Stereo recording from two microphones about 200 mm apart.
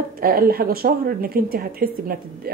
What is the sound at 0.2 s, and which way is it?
Speech, 50° right (ahead or behind).